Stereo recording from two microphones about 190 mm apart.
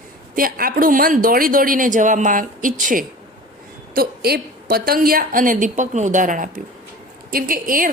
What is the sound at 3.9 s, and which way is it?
Speech, 55° right (ahead or behind).